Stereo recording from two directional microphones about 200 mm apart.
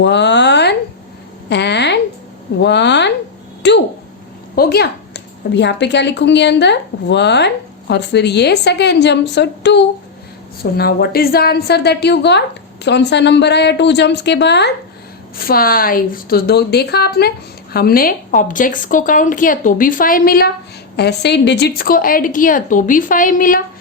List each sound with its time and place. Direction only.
0.0 s a sound: 60° left (ahead or behind)
2.6 s a woman's voice: 60° left (ahead or behind)
15.4 s a woman's voice: 50° left (ahead or behind)